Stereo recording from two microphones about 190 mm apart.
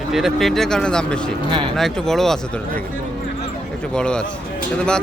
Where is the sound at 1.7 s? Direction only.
Centre (ahead or behind).